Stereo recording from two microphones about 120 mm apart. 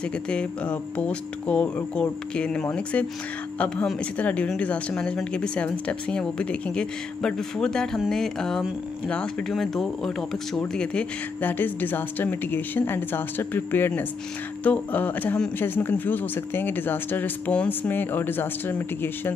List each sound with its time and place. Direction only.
0.3 s speech: 10° left (ahead or behind)